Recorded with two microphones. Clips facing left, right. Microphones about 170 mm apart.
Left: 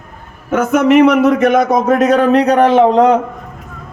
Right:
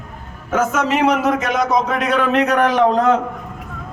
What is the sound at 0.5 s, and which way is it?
A man's voice, 65° left (ahead or behind).